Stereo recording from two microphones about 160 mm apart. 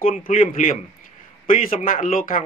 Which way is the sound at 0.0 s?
60° left (ahead or behind).